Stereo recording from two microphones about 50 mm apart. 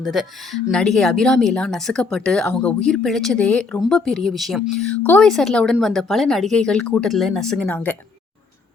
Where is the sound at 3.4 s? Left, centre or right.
Left.